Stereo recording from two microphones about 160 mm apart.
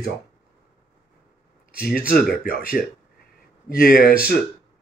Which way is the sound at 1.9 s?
65° left (ahead or behind).